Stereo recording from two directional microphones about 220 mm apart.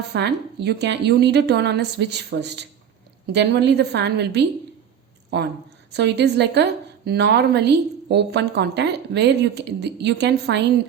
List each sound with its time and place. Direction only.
0.1 s a woman's voice: 50° right (ahead or behind)